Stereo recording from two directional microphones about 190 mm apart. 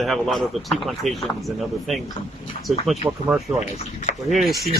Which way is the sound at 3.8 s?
35° left (ahead or behind).